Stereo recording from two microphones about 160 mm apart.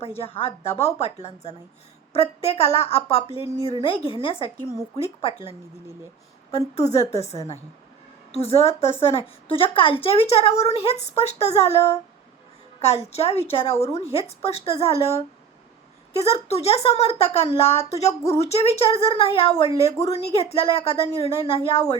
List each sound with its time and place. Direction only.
0.2 s a woman's voice: 35° left (ahead or behind)
6.7 s a woman's voice: 45° left (ahead or behind)
12.8 s a woman's voice: 40° left (ahead or behind)